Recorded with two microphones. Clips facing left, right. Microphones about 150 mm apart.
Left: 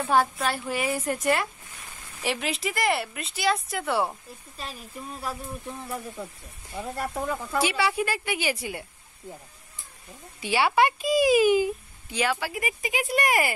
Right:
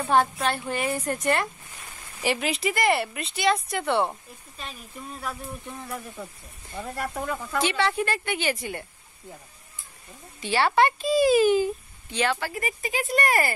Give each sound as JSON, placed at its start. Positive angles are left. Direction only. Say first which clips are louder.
{"t": 0.1, "sound": "speech", "louder": "right 2 dB", "side_deg": 5}
{"t": 5.2, "sound": "speech", "louder": "left 1 dB", "side_deg": 5}
{"t": 10.4, "sound": "speech", "louder": "right 1 dB", "side_deg": 10}